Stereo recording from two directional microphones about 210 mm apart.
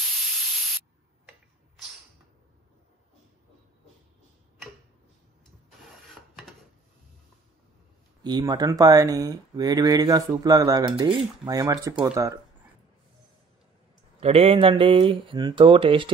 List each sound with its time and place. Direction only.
5.8 s printer: centre (ahead or behind)
8.2 s speech: 20° right (ahead or behind)
14.2 s speech: 30° right (ahead or behind)